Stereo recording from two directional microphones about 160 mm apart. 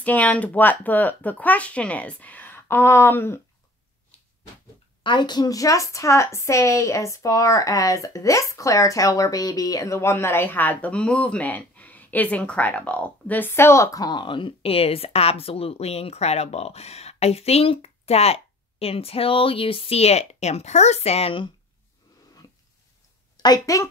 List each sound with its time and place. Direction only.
0.0 s speech: 10° left (ahead or behind)
5.0 s a woman's voice: 30° left (ahead or behind)
23.3 s a woman's voice: 25° left (ahead or behind)